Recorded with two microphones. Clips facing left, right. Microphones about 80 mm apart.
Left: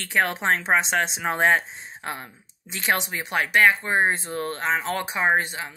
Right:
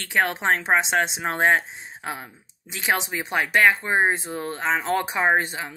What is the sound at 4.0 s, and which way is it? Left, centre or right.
Speech, centre.